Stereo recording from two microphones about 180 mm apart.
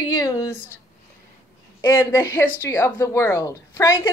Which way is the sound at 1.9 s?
15° left (ahead or behind).